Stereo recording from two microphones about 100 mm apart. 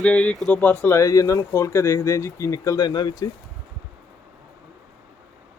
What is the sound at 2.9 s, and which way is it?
Speech, 45° left (ahead or behind).